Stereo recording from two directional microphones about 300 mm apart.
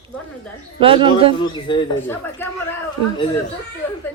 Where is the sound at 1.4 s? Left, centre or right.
Centre.